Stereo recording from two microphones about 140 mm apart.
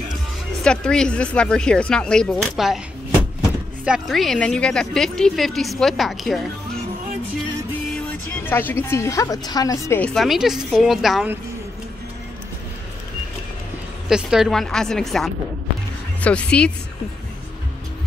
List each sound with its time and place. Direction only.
0.7 s a woman's voice: 5° left (ahead or behind)
3.8 s a woman's voice: centre (ahead or behind)
8.5 s a woman's voice: 15° left (ahead or behind)
9.9 s speech: 10° left (ahead or behind)
10.2 s a woman's voice: centre (ahead or behind)
14.0 s a woman's voice: 5° right (ahead or behind)